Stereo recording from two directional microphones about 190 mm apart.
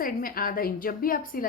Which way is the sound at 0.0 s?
50° left (ahead or behind).